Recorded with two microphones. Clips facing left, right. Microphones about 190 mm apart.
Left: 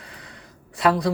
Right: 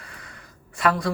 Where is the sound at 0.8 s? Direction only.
20° left (ahead or behind).